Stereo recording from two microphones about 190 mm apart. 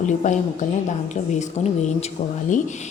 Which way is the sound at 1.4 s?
40° left (ahead or behind).